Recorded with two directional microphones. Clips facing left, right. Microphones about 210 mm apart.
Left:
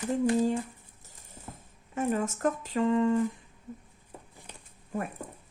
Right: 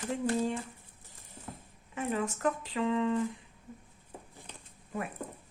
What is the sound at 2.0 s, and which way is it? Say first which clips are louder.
Speech: left 4 dB; 45° left (ahead or behind).